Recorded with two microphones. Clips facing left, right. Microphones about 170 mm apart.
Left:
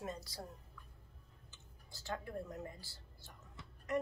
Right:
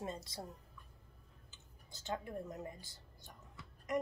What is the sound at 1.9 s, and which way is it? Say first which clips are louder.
A woman's voice: right 1 dB; 20° right (ahead or behind).